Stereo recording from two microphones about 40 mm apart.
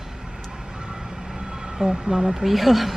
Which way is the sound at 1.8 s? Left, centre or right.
Centre.